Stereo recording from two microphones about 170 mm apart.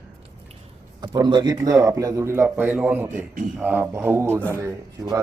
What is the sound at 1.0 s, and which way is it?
A man's voice, 25° right (ahead or behind).